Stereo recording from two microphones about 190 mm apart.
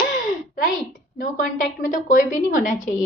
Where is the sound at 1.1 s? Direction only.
45° left (ahead or behind).